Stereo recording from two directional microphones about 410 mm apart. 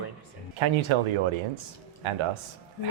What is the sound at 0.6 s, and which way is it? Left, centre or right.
Speech, right.